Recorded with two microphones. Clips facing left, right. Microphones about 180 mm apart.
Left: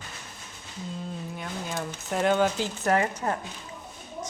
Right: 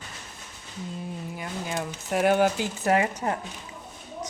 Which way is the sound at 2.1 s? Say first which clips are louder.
Right 2 dB; 10° right (ahead or behind).